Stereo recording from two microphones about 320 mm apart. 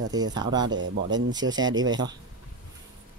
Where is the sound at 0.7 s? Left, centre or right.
Right.